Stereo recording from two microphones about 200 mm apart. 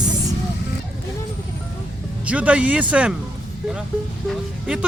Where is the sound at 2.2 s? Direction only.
5° right (ahead or behind).